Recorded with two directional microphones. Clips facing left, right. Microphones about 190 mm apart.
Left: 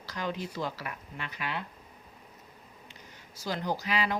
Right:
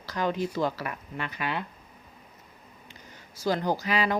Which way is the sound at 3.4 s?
50° right (ahead or behind).